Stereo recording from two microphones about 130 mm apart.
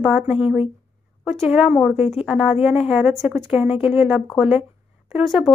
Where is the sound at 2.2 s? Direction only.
5° right (ahead or behind).